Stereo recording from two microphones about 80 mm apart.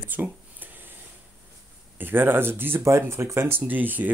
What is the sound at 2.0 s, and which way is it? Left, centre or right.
Speech, right.